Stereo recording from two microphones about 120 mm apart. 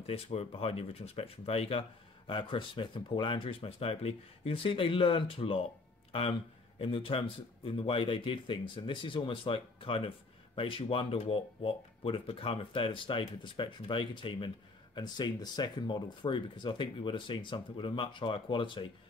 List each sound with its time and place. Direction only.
0.0 s speech: 60° left (ahead or behind)
6.8 s speech: 50° left (ahead or behind)